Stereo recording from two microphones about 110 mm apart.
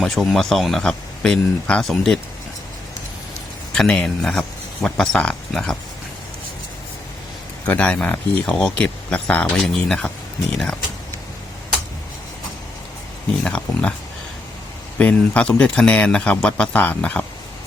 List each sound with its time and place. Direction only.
0.0 s speech: centre (ahead or behind)
3.8 s speech: 5° left (ahead or behind)
7.7 s speech: 10° left (ahead or behind)
13.4 s speech: 10° left (ahead or behind)
14.9 s speech: 10° left (ahead or behind)